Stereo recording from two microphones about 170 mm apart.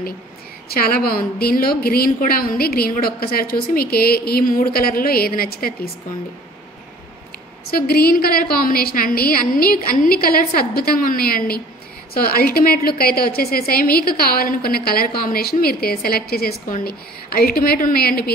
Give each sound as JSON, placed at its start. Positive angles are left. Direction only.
{"t": 0.7, "sound": "a woman's voice", "side_deg": 60}
{"t": 7.6, "sound": "a woman's voice", "side_deg": 65}